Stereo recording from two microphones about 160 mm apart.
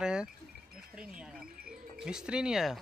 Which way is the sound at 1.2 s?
5° right (ahead or behind).